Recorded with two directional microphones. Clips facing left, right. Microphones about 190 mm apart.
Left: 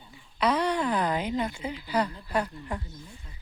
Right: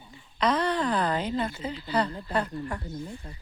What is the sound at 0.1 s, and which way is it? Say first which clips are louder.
Speech: even; 10° left (ahead or behind).